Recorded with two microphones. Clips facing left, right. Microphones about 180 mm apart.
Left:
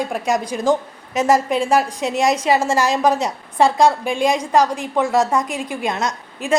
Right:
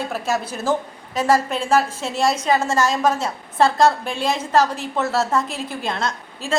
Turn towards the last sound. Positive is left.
turn(degrees=15)  # may be behind; listen again after turning